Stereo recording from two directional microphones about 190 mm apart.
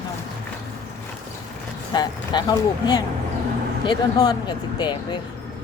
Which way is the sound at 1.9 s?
20° left (ahead or behind).